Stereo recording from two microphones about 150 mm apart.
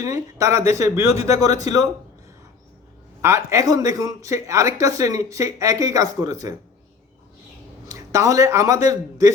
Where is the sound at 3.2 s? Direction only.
20° right (ahead or behind).